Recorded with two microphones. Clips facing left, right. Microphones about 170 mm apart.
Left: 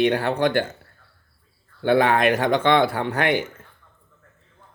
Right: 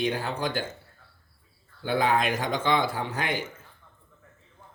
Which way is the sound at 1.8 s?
65° left (ahead or behind).